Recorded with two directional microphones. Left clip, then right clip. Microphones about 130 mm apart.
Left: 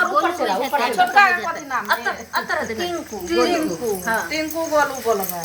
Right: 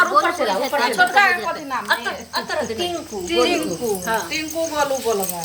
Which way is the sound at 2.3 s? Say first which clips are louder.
Left 1 dB; 35° right (ahead or behind).